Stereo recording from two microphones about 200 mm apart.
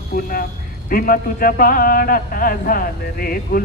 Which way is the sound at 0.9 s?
45° left (ahead or behind).